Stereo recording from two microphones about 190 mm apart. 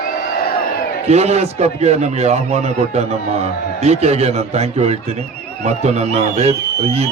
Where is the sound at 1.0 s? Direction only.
35° right (ahead or behind).